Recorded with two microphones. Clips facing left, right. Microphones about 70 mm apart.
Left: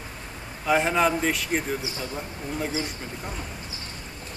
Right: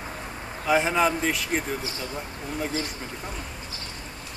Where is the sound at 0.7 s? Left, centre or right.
Centre.